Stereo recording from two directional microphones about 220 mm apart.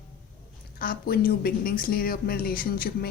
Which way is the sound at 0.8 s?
40° left (ahead or behind).